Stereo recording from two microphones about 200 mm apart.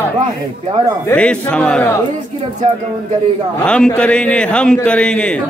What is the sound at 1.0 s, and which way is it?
Speech, 5° left (ahead or behind).